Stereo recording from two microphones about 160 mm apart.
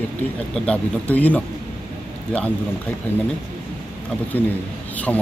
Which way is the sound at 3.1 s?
15° left (ahead or behind).